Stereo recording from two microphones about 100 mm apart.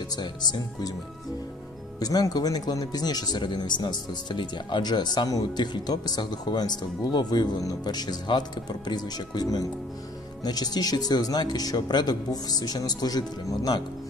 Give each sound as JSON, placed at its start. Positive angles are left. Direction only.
{"t": 0.1, "sound": "speech", "side_deg": 45}
{"t": 2.0, "sound": "speech", "side_deg": 40}